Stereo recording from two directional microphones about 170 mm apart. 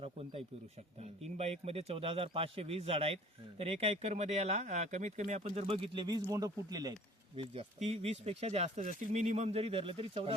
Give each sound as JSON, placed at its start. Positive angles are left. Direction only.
{"t": 0.0, "sound": "speech", "side_deg": -35}
{"t": 7.5, "sound": "speech", "side_deg": -40}